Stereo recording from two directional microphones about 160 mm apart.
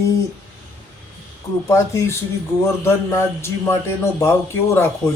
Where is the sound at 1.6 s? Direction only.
20° left (ahead or behind).